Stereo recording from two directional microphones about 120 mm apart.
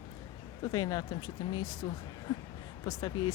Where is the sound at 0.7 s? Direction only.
35° left (ahead or behind).